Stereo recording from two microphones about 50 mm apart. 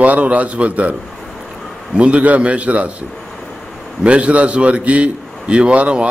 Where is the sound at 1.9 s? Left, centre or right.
Right.